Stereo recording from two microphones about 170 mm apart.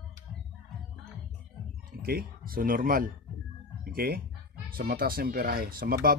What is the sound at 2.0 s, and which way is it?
Speech, 60° right (ahead or behind).